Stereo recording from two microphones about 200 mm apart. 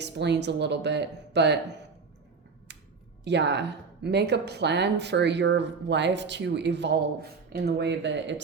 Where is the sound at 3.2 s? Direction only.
60° right (ahead or behind).